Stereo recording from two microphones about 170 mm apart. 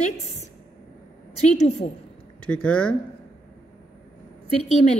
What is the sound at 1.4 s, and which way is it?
Speech, 40° left (ahead or behind).